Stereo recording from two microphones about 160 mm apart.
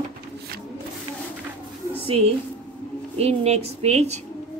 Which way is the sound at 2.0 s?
40° right (ahead or behind).